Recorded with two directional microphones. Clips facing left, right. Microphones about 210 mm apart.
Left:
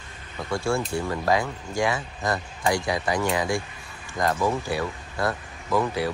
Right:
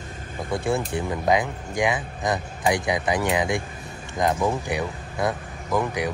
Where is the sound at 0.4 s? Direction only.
20° right (ahead or behind).